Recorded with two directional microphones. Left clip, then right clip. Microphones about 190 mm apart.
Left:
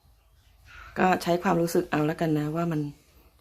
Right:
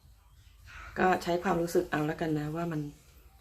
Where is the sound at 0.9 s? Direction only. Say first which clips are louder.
Left 4 dB; 45° left (ahead or behind).